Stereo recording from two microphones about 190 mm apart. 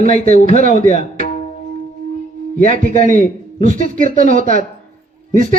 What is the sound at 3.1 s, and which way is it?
Speech, 35° left (ahead or behind).